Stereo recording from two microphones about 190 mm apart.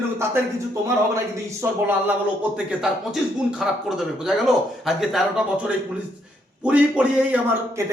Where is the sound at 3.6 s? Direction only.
5° right (ahead or behind).